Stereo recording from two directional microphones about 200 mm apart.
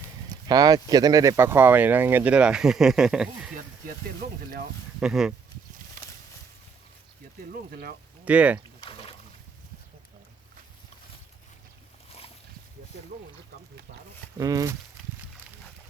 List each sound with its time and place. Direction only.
0.4 s speech: 20° right (ahead or behind); by 3.5 s centre (ahead or behind)
4.9 s speech: centre (ahead or behind)
7.5 s speech: 50° right (ahead or behind)
8.2 s speech: 5° right (ahead or behind)
8.8 s a sound: 25° left (ahead or behind)
14.3 s speech: 15° right (ahead or behind)